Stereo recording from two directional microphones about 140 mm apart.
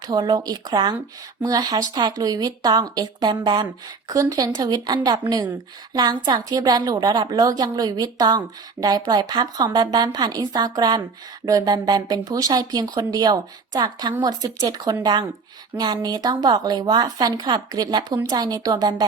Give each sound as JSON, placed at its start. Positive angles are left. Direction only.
{"t": 0.1, "sound": "a woman's voice", "side_deg": -30}